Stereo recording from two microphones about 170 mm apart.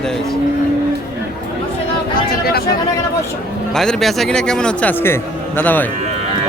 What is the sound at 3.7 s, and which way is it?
Speech, centre (ahead or behind).